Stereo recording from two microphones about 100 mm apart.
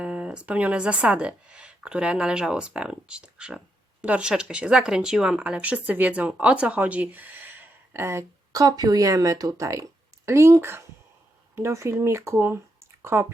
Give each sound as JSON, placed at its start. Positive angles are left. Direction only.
{"t": 0.0, "sound": "speech", "side_deg": -10}